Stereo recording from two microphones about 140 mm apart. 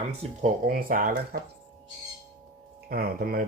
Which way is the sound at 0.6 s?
90° right.